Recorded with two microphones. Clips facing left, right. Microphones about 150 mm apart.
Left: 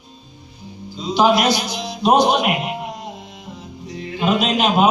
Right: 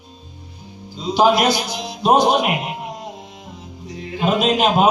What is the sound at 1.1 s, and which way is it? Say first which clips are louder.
A man's voice: even; 50° right (ahead or behind).